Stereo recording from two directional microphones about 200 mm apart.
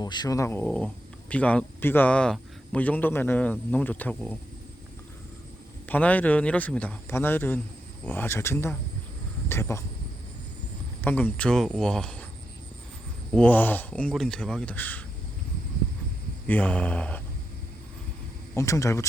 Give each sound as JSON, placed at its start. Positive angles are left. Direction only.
{"t": 0.0, "sound": "speech", "side_deg": 20}
{"t": 5.8, "sound": "speech", "side_deg": 10}
{"t": 11.0, "sound": "speech", "side_deg": 10}
{"t": 13.3, "sound": "speech", "side_deg": 5}
{"t": 16.5, "sound": "speech", "side_deg": 5}
{"t": 18.5, "sound": "speech", "side_deg": 15}